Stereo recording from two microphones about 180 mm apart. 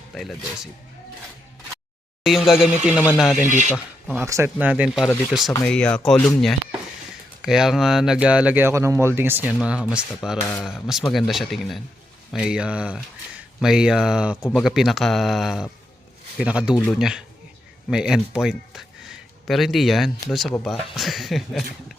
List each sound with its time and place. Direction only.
0.1 s speech: centre (ahead or behind)
2.2 s speech: centre (ahead or behind)
3.4 s speech: 45° right (ahead or behind)
4.0 s speech: 10° right (ahead or behind)